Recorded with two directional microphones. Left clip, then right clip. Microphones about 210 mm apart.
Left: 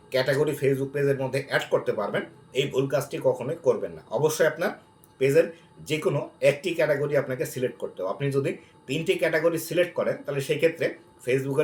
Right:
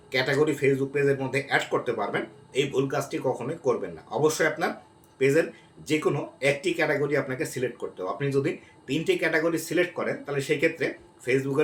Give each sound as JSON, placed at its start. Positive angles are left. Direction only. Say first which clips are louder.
{"t": 0.1, "sound": "speech", "louder": "even", "side_deg": -5}
{"t": 5.8, "sound": "speech", "louder": "right 1 dB", "side_deg": -5}